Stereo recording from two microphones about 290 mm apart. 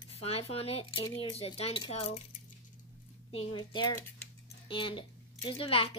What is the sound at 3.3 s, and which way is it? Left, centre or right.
A woman's voice, centre.